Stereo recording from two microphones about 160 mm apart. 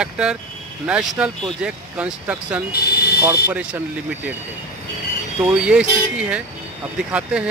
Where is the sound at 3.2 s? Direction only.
10° right (ahead or behind).